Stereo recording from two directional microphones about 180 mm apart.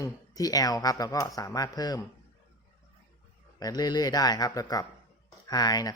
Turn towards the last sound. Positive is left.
turn(degrees=20)  # may be behind; listen again after turning